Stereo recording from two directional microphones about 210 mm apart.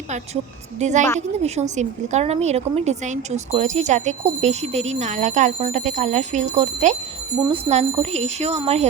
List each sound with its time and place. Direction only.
0.8 s speech: 35° right (ahead or behind)